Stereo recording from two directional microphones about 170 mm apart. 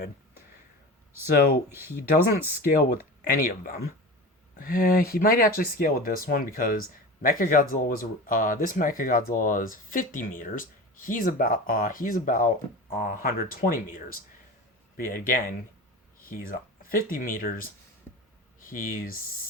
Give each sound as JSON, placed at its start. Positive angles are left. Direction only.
{"t": 1.7, "sound": "speech", "side_deg": -15}
{"t": 3.2, "sound": "speech", "side_deg": 60}